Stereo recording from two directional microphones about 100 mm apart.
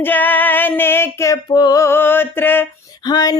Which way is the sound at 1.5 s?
45° left (ahead or behind).